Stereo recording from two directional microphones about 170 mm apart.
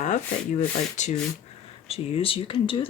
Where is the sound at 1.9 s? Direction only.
35° left (ahead or behind).